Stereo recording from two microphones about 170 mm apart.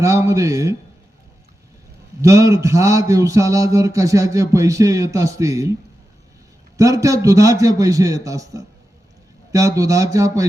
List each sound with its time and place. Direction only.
0.0 s speech: 20° right (ahead or behind)
2.2 s a man's voice: 15° right (ahead or behind)
6.7 s a man's voice: 20° right (ahead or behind)